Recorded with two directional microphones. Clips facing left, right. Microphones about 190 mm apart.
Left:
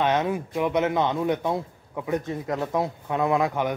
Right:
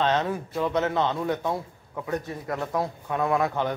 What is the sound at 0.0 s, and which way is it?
Speech, 10° left (ahead or behind).